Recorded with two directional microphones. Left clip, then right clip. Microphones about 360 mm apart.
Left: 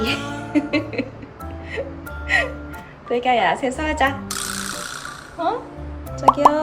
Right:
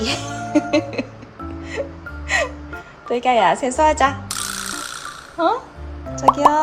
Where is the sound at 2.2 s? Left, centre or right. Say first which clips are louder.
Left 1 dB; centre.